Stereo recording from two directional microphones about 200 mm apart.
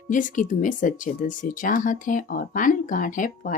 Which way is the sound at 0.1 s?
40° left (ahead or behind).